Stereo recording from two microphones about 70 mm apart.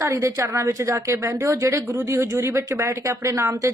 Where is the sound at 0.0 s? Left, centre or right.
Right.